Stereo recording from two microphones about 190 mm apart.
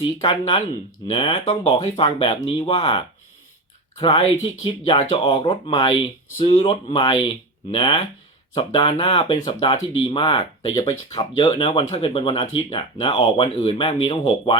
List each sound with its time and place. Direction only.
0.0 s speech: 25° left (ahead or behind)